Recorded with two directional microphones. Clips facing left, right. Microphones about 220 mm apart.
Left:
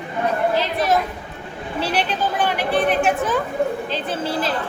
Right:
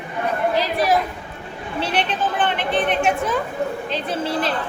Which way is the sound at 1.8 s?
5° left (ahead or behind).